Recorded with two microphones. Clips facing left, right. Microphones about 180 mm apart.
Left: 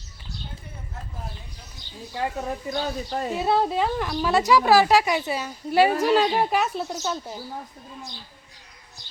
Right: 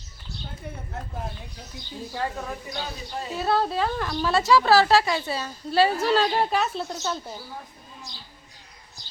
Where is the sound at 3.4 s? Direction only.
20° left (ahead or behind).